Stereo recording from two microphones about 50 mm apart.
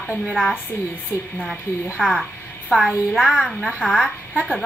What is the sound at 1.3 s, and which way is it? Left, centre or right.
Speech, left.